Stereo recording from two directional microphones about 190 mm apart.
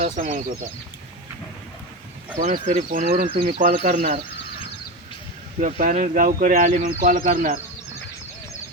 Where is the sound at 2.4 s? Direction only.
40° right (ahead or behind).